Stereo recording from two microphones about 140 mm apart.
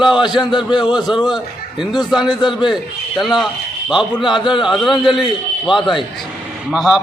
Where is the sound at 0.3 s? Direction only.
30° left (ahead or behind).